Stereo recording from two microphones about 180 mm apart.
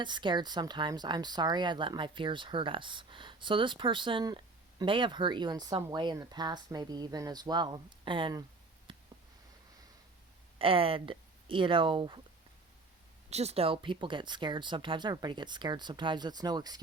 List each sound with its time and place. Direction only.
0.0 s speech: 25° right (ahead or behind)
8.9 s a sound: 25° right (ahead or behind)
10.6 s speech: 30° right (ahead or behind)
13.3 s speech: 35° right (ahead or behind)